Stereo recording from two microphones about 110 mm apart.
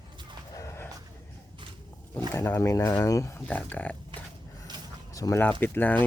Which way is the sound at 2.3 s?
20° left (ahead or behind).